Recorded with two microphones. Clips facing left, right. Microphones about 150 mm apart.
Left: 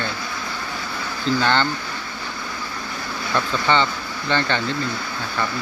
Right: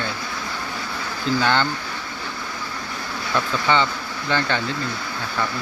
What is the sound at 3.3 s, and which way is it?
Speech, 5° right (ahead or behind).